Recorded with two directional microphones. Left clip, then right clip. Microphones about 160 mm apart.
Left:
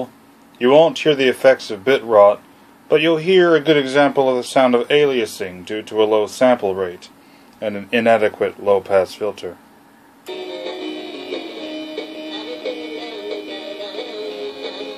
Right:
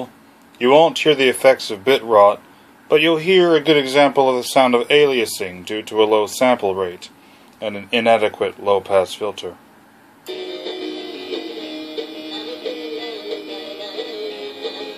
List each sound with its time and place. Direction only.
0.6 s speech: centre (ahead or behind)
7.6 s speech: 15° left (ahead or behind)
10.2 s music: centre (ahead or behind)